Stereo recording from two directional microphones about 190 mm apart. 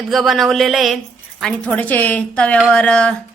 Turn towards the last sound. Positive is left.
turn(degrees=5)  # may be behind; listen again after turning